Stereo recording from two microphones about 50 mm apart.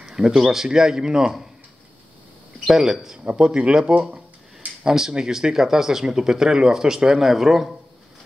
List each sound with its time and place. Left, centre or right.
0.0 s speech: centre
2.6 s speech: centre
3.3 s speech: centre